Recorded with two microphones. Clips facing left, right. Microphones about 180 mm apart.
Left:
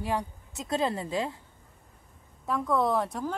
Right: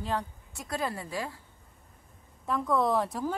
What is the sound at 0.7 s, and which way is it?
Speech, 25° left (ahead or behind).